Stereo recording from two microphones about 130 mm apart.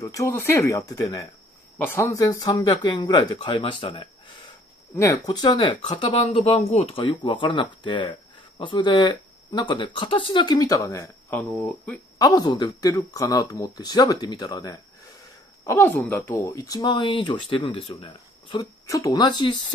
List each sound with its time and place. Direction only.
0.0 s speech: 25° left (ahead or behind); by 4.1 s 45° left (ahead or behind)
4.9 s speech: 25° left (ahead or behind); by 6.4 s 40° left (ahead or behind)
6.5 s speech: 55° left (ahead or behind)
7.0 s speech: 40° left (ahead or behind); by 12.0 s 10° left (ahead or behind)
12.2 s speech: 30° left (ahead or behind)